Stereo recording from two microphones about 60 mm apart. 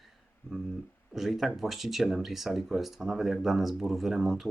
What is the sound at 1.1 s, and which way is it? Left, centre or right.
Speech, centre.